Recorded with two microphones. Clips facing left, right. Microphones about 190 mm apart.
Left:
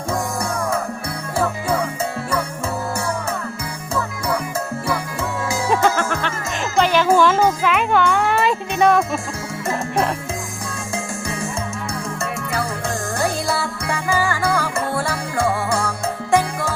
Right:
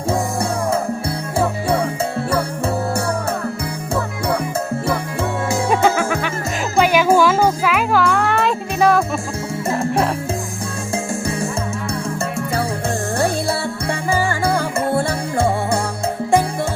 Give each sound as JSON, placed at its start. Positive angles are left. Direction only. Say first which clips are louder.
{"t": 0.1, "sound": "music", "louder": "right 3 dB", "side_deg": -30}
{"t": 5.7, "sound": "music", "louder": "right 1 dB", "side_deg": -10}
{"t": 10.9, "sound": "music", "louder": "right 5 dB", "side_deg": -30}
{"t": 13.1, "sound": "music", "louder": "right 1 dB", "side_deg": -30}